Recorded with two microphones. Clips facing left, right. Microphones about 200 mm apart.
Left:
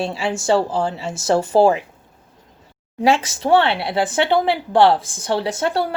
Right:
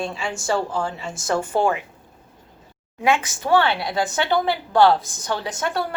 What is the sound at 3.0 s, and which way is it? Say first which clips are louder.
A woman's voice: left 4 dB; 30° left (ahead or behind).